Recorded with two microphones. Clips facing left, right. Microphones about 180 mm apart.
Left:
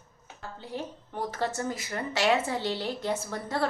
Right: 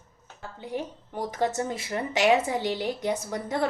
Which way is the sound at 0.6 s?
15° right (ahead or behind).